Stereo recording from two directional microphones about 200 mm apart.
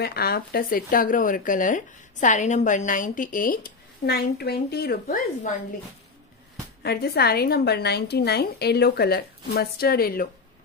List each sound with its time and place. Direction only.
0.0 s speech: 50° left (ahead or behind)
6.8 s speech: 55° left (ahead or behind)